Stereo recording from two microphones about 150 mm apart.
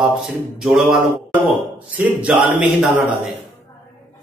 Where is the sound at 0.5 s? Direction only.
5° right (ahead or behind).